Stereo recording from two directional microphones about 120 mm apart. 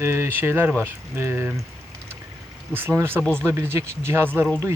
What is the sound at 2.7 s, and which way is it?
Speech, 20° right (ahead or behind).